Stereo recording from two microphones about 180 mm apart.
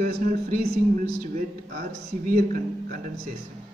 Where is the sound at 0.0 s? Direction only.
50° right (ahead or behind).